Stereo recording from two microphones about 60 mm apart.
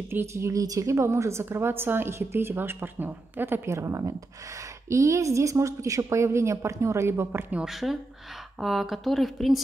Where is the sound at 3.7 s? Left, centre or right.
Right.